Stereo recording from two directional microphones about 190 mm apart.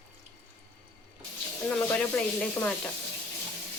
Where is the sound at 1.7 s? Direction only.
5° left (ahead or behind).